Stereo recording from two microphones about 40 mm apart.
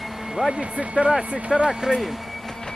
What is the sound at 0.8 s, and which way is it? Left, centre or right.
Speech, right.